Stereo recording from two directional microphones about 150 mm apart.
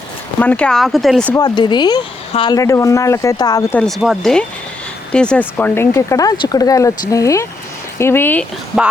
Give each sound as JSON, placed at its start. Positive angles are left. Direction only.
{"t": 0.3, "sound": "speech", "side_deg": 10}
{"t": 1.4, "sound": "speech", "side_deg": 30}
{"t": 2.6, "sound": "speech", "side_deg": 20}
{"t": 3.8, "sound": "speech", "side_deg": 0}